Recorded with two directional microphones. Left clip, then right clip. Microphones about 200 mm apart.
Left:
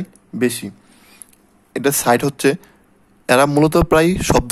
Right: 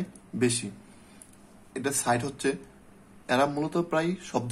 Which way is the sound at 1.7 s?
50° left (ahead or behind).